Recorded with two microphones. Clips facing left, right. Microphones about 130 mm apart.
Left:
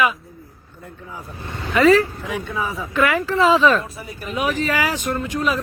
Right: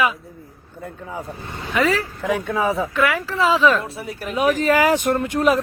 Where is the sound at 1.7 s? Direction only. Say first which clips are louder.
Left 6 dB; 10° right (ahead or behind).